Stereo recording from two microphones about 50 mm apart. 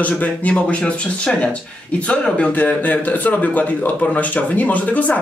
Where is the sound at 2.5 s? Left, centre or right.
Left.